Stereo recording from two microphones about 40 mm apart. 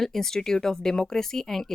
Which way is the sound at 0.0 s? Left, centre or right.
Centre.